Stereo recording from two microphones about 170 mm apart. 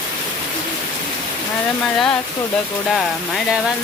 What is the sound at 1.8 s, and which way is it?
Speech, centre (ahead or behind).